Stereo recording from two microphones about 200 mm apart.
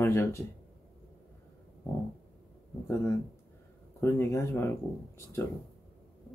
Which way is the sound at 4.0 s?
15° left (ahead or behind).